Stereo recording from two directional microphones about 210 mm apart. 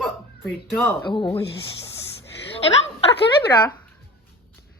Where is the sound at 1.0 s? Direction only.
25° left (ahead or behind).